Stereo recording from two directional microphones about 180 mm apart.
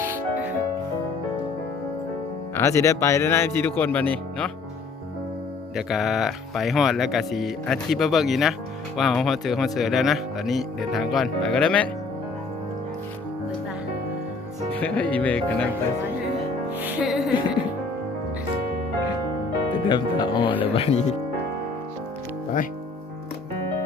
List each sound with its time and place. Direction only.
0.0 s music: 10° right (ahead or behind)
2.6 s speech: 15° left (ahead or behind)
5.7 s speech: centre (ahead or behind)
14.8 s speech: 5° left (ahead or behind)
16.7 s music: 10° right (ahead or behind)
19.9 s speech: 25° left (ahead or behind)